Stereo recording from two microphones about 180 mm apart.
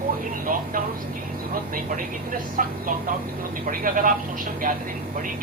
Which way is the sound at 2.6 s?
50° right (ahead or behind).